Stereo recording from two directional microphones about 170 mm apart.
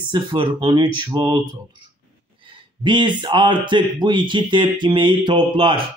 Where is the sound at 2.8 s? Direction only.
30° right (ahead or behind).